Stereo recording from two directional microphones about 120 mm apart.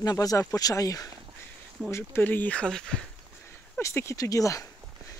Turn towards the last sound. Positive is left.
turn(degrees=30)  # may be behind; listen again after turning